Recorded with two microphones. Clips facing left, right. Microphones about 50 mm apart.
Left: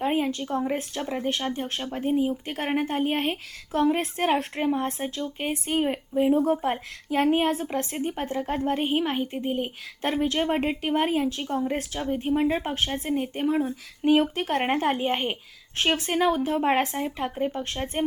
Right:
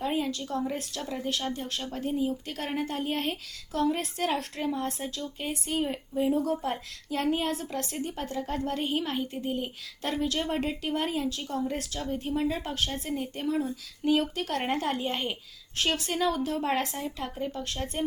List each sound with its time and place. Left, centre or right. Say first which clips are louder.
0.0 s a woman's voice: left 4 dB; left